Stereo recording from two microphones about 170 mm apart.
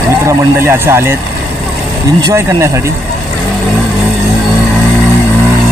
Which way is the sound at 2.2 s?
15° right (ahead or behind).